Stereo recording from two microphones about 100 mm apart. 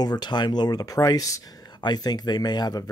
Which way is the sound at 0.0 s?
45° left (ahead or behind).